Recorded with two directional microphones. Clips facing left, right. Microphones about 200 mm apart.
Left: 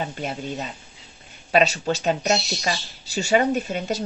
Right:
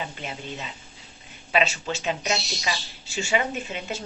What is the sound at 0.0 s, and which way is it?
A woman's voice, 45° left (ahead or behind).